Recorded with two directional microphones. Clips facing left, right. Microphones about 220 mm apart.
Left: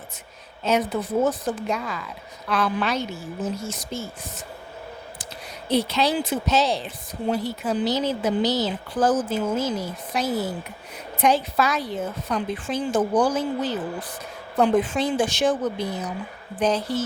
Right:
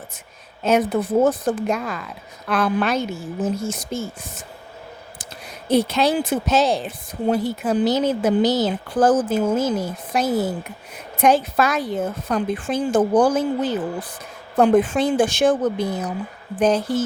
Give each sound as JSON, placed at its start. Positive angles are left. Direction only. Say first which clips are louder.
{"t": 0.6, "sound": "a woman's voice", "louder": "right 4 dB", "side_deg": -50}
{"t": 5.6, "sound": "a woman's voice", "louder": "right 4 dB", "side_deg": -50}